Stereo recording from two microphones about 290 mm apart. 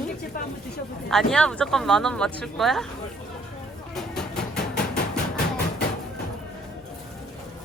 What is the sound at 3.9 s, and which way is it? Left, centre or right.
Vehicle, centre.